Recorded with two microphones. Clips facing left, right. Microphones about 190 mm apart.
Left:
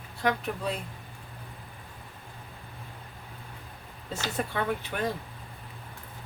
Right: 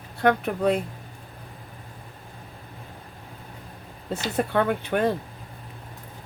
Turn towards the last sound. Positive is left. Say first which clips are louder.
# right 7 dB
turn(degrees=-60)  # may be behind; listen again after turning